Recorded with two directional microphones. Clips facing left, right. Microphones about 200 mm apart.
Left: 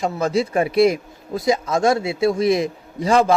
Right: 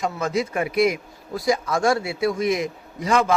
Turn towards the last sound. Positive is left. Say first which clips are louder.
# left 4 dB
turn(degrees=30)  # may be behind; listen again after turning